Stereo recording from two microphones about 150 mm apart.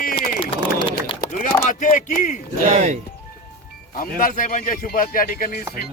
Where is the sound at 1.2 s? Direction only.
55° left (ahead or behind).